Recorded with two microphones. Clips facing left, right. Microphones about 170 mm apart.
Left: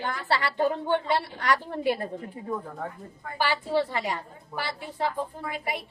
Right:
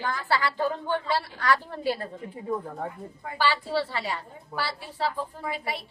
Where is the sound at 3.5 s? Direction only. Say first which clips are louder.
Left 2 dB; 20° left (ahead or behind).